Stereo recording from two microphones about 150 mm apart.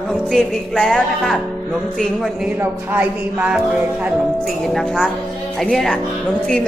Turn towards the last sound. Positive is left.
turn(degrees=5)  # may be behind; listen again after turning